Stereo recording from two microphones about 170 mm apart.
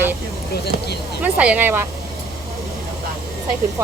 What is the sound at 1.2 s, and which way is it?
Speech, 5° right (ahead or behind).